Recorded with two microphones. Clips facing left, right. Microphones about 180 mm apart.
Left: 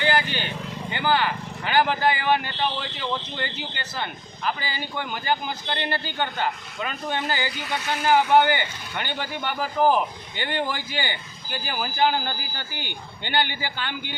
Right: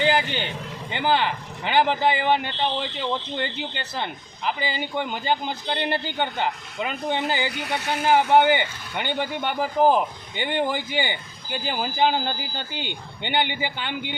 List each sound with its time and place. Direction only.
0.0 s vehicle: 20° right (ahead or behind)
0.9 s speech: 20° right (ahead or behind)
7.5 s speech: 65° right (ahead or behind)
8.0 s speech: 20° right (ahead or behind)